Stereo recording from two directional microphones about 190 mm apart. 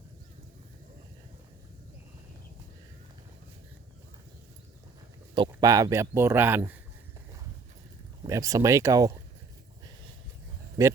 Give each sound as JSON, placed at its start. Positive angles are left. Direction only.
{"t": 5.5, "sound": "speech", "side_deg": -15}
{"t": 8.3, "sound": "speech", "side_deg": -15}
{"t": 10.8, "sound": "a sound", "side_deg": -20}